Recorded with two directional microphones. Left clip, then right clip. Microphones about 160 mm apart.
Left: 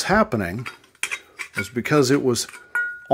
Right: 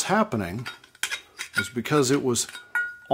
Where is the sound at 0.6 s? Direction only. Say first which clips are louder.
Left 2 dB; 5° right (ahead or behind).